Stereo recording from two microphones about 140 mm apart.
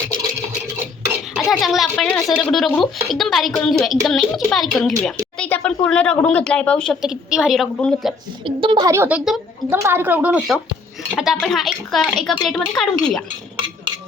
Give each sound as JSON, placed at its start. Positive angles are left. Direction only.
{"t": 1.4, "sound": "speech", "side_deg": 0}
{"t": 7.0, "sound": "speech", "side_deg": -5}
{"t": 8.4, "sound": "a woman's voice", "side_deg": -35}
{"t": 8.9, "sound": "a woman's voice", "side_deg": -15}
{"t": 9.6, "sound": "a woman's voice", "side_deg": -15}